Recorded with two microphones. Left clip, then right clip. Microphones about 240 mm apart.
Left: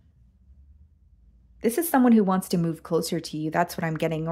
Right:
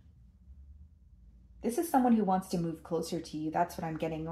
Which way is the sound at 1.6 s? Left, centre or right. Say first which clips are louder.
Left 7 dB; left.